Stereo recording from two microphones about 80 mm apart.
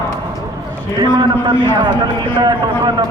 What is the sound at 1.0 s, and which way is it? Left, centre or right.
A man's voice, right.